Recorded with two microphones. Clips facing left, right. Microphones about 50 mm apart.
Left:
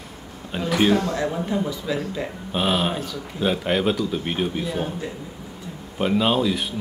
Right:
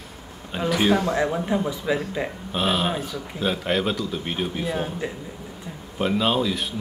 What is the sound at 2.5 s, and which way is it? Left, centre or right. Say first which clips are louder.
Speech: left 1 dB; centre.